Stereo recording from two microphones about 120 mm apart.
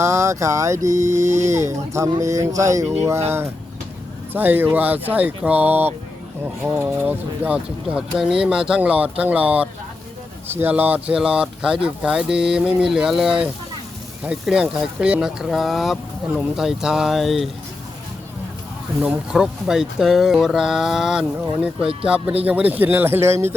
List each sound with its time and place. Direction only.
0.0 s speech: 25° right (ahead or behind)
4.3 s speech: 15° right (ahead or behind)
19.0 s speech: 5° right (ahead or behind); by 23.6 s 20° right (ahead or behind)